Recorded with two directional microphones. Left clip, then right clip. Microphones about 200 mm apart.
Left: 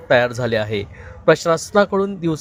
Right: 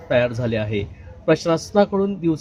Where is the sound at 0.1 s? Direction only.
30° left (ahead or behind).